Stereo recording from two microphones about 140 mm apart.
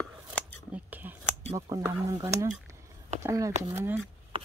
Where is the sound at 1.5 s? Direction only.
25° right (ahead or behind).